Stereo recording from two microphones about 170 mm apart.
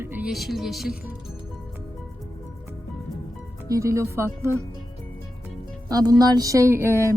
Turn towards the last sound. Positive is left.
turn(degrees=-15)  # may be behind; listen again after turning